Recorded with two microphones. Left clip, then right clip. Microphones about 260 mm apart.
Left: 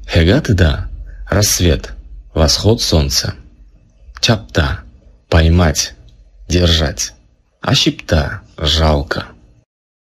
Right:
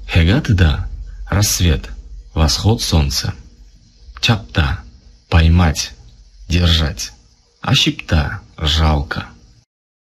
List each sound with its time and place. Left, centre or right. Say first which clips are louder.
0.0 s speech: left 4 dB; left